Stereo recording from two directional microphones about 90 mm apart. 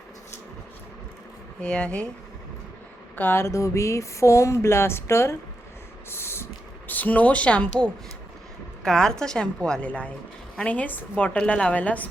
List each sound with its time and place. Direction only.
1.6 s a woman's voice: 10° left (ahead or behind)
3.2 s a sound: 25° left (ahead or behind)
8.8 s a woman's voice: 5° left (ahead or behind)